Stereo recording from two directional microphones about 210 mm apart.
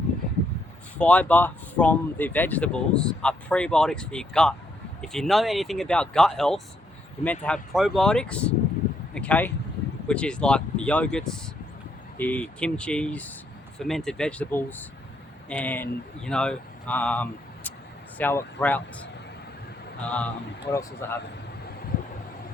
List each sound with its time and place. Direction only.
0.9 s speech: 5° left (ahead or behind)
20.1 s speech: 5° left (ahead or behind)